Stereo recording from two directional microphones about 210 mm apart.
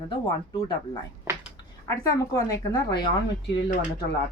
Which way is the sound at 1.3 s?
15° right (ahead or behind).